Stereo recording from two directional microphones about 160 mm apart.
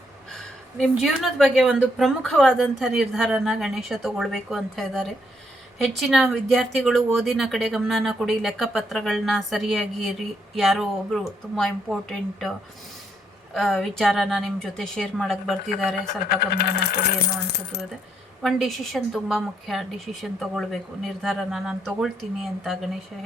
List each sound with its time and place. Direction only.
0.8 s speech: centre (ahead or behind)
13.5 s speech: centre (ahead or behind)
16.3 s coin: 80° left
18.4 s speech: centre (ahead or behind)